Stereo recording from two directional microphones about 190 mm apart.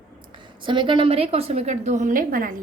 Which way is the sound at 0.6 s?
25° right (ahead or behind).